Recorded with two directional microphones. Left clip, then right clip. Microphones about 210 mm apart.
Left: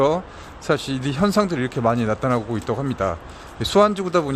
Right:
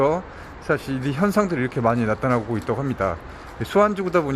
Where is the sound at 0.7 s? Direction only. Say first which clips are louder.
Left 1 dB; 10° left (ahead or behind).